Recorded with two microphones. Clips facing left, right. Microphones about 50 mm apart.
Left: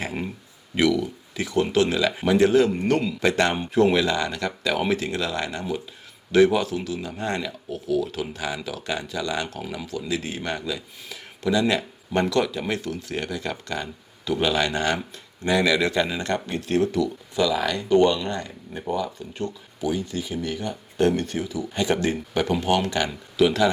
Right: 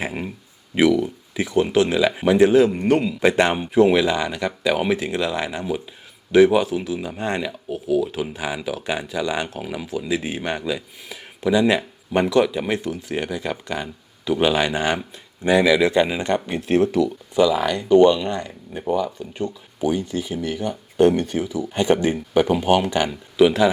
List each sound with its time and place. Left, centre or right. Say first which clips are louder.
0.0 s speech: right 2 dB; centre